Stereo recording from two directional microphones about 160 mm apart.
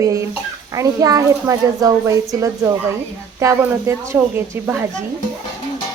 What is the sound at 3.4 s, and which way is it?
Speech, 15° right (ahead or behind).